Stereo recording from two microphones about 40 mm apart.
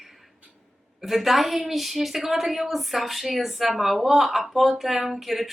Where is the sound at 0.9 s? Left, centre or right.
Centre.